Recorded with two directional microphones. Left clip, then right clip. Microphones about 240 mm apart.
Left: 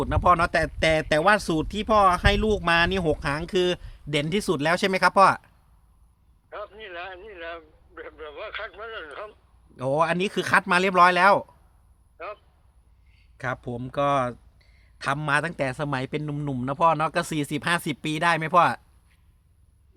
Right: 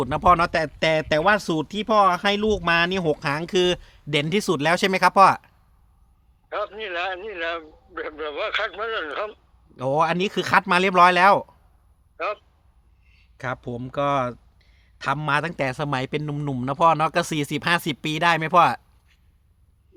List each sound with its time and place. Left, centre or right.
0.0 s speech: centre
6.5 s a man's voice: right
9.7 s speech: centre
12.1 s speech: right
13.1 s speech: centre